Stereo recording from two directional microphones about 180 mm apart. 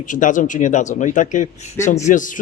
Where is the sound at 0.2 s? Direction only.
45° left (ahead or behind).